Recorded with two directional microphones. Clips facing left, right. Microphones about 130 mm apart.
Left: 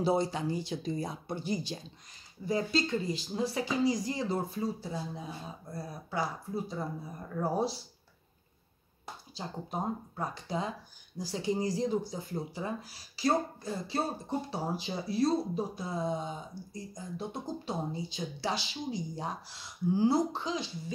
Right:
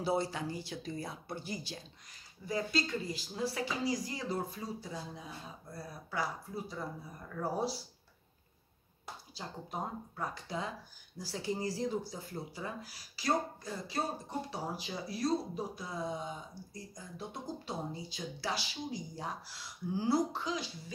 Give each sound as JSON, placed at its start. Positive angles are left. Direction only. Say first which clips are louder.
{"t": 0.0, "sound": "speech", "louder": "left 4 dB", "side_deg": 20}
{"t": 9.3, "sound": "speech", "louder": "left 4 dB", "side_deg": 25}